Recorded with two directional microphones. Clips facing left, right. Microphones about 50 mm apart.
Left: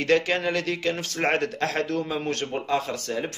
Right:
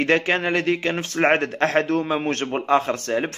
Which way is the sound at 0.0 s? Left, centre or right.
Right.